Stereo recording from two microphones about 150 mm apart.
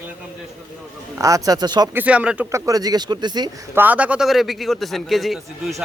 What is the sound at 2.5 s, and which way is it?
Speech, 25° right (ahead or behind).